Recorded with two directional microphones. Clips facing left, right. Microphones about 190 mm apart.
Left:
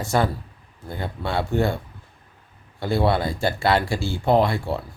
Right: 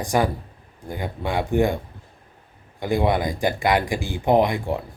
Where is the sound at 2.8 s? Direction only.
15° right (ahead or behind).